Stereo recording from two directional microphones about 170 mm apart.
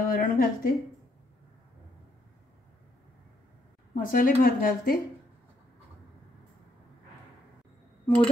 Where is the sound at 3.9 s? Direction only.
55° left (ahead or behind).